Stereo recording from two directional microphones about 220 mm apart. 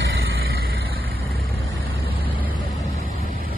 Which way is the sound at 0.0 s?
45° right (ahead or behind).